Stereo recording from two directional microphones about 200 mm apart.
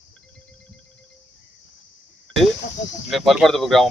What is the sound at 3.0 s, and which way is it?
Speech, centre (ahead or behind).